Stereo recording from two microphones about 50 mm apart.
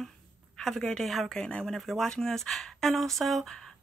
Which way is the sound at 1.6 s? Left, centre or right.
Centre.